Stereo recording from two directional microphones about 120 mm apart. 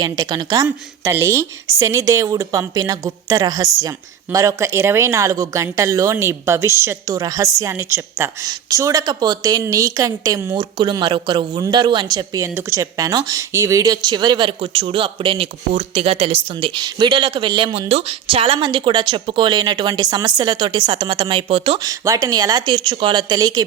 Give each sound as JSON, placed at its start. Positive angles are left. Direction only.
{"t": 0.0, "sound": "speech", "side_deg": -35}
{"t": 17.7, "sound": "speech", "side_deg": -55}
{"t": 21.8, "sound": "speech", "side_deg": -30}